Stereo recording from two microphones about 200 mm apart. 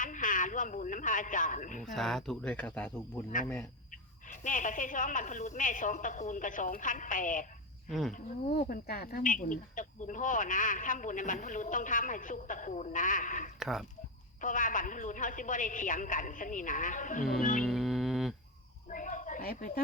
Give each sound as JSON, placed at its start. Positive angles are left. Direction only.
{"t": 0.0, "sound": "speech", "side_deg": 40}
{"t": 1.8, "sound": "speech", "side_deg": 0}
{"t": 4.3, "sound": "speech", "side_deg": 40}
{"t": 7.9, "sound": "speech", "side_deg": 0}
{"t": 8.1, "sound": "speech", "side_deg": 45}
{"t": 13.6, "sound": "speech", "side_deg": 0}
{"t": 14.4, "sound": "speech", "side_deg": 40}
{"t": 17.6, "sound": "music", "side_deg": 0}
{"t": 18.9, "sound": "a sound", "side_deg": 40}